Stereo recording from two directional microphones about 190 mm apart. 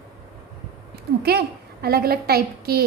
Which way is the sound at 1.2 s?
60° right (ahead or behind).